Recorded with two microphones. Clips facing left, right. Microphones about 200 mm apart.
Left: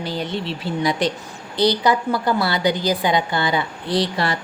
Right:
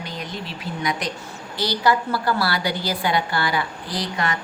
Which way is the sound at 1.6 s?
20° left (ahead or behind).